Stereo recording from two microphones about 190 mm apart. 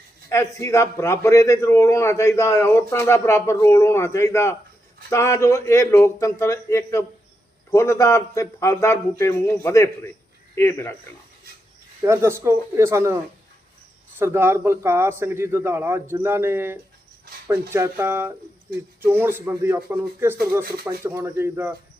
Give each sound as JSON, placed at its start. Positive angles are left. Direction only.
{"t": 0.3, "sound": "a man's voice", "side_deg": 15}
{"t": 12.0, "sound": "a man's voice", "side_deg": -15}
{"t": 14.2, "sound": "a man's voice", "side_deg": -10}